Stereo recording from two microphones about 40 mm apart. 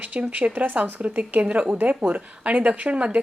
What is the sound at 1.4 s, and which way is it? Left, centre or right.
Speech, right.